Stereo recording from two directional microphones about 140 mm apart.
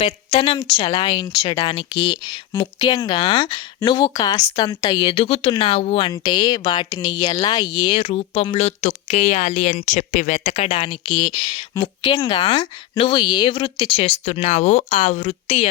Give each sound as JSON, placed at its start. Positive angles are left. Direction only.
{"t": 0.0, "sound": "speech", "side_deg": 40}